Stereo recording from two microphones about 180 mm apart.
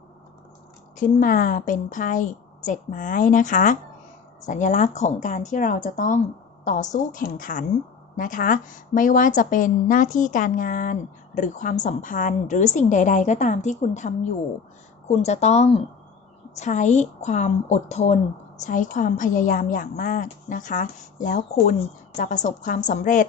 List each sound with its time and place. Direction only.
0.9 s a woman's voice: 45° left (ahead or behind)